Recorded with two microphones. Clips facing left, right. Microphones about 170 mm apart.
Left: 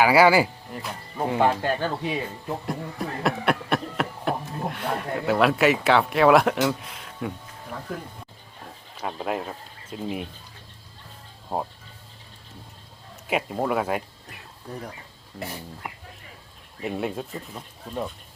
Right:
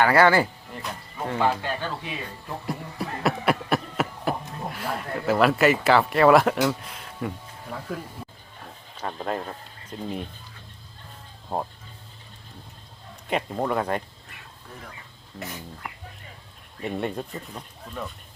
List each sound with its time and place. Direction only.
0.0 s speech: 10° left (ahead or behind)
1.4 s speech: 50° left (ahead or behind)
2.5 s speech: centre (ahead or behind)
9.0 s speech: 5° left (ahead or behind)
11.5 s speech: 5° left (ahead or behind)
13.2 s speech: 5° left (ahead or behind)
15.4 s speech: 30° left (ahead or behind)
16.8 s speech: centre (ahead or behind)